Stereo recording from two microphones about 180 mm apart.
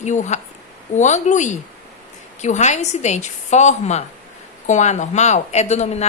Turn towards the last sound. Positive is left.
turn(degrees=40)  # may be behind; listen again after turning